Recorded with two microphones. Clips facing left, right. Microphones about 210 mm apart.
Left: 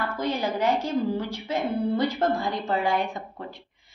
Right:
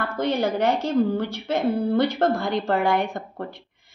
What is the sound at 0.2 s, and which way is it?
A woman's voice, 65° right (ahead or behind).